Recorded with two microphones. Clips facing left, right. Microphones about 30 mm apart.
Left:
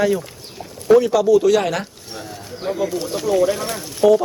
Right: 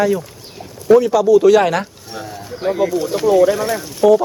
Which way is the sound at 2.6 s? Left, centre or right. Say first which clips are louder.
Right 5 dB; right.